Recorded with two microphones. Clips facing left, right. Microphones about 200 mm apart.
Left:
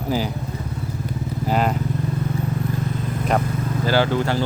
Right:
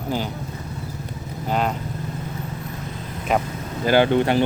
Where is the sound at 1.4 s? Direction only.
5° left (ahead or behind).